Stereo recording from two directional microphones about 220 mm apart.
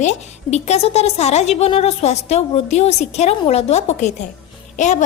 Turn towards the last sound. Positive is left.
turn(degrees=35)  # may be behind; listen again after turning